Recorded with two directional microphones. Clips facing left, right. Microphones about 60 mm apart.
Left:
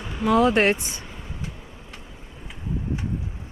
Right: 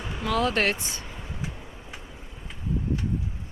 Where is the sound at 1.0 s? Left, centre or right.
Centre.